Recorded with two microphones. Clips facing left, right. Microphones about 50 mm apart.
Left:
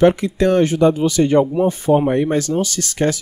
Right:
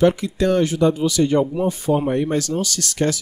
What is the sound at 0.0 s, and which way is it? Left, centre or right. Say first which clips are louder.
Speech: left 3 dB; left.